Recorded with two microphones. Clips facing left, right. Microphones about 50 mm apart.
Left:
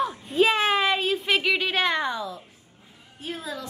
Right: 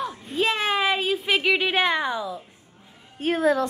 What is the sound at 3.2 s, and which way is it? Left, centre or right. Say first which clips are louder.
Speech: right 13 dB; right.